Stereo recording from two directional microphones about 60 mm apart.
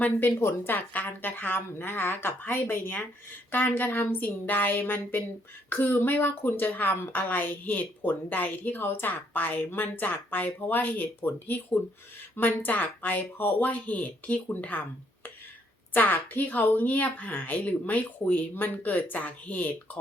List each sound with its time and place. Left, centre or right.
0.0 s a woman's voice: left
0.3 s a woman's voice: left